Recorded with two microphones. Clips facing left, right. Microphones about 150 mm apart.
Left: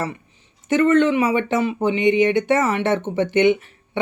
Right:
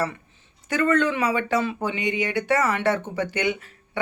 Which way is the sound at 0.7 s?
20° left (ahead or behind).